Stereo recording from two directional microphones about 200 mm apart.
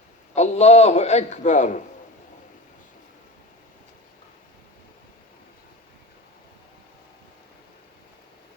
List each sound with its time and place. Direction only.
0.3 s a man's voice: 35° left (ahead or behind)